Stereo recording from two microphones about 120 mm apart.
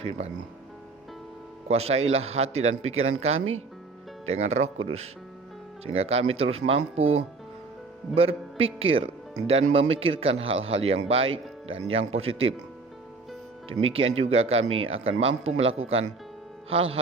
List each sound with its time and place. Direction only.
0.0 s speech: 55° right (ahead or behind)
1.6 s a man's voice: 60° right (ahead or behind)
13.8 s a man's voice: 50° right (ahead or behind)